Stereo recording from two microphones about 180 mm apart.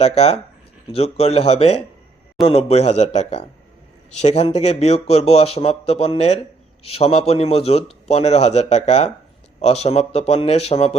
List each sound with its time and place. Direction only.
0.0 s a man's voice: 35° left (ahead or behind)